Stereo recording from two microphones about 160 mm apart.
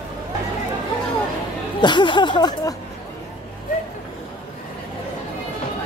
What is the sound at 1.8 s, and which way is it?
Speech, 30° left (ahead or behind).